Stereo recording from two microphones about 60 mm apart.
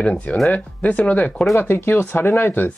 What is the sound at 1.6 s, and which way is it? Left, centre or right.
Speech, left.